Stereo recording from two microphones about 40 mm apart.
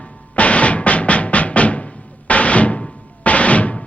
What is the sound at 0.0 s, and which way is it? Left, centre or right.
Music, left.